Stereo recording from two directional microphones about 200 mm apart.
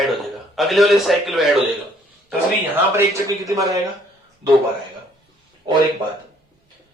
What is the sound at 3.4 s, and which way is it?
Speech, 15° right (ahead or behind).